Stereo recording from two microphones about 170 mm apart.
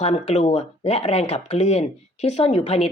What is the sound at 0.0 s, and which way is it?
Speech, 40° left (ahead or behind).